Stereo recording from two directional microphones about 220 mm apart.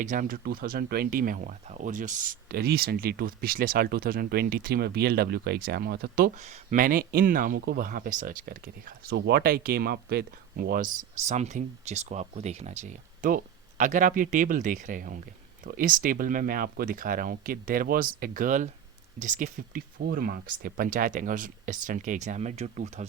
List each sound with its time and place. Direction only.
0.0 s speech: 35° right (ahead or behind)